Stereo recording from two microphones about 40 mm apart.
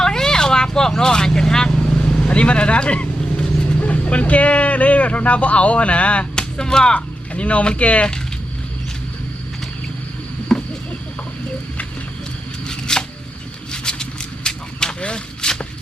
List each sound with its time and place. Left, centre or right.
0.0 s vehicle: centre; by 3.1 s left
3.8 s speech: left
6.3 s speech: centre; by 8.0 s left
10.5 s a sound: centre
12.6 s shuffling cards: centre
13.7 s a sound: centre